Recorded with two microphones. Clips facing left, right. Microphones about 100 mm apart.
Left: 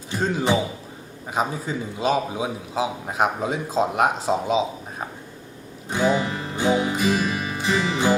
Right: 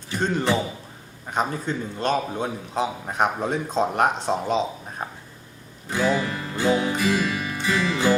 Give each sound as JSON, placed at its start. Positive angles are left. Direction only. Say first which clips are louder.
{"t": 0.1, "sound": "a man's voice", "louder": "left 1 dB", "side_deg": 5}
{"t": 5.9, "sound": "music", "louder": "left 1 dB", "side_deg": 20}